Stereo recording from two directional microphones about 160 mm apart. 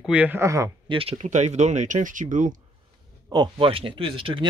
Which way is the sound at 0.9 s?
35° right (ahead or behind).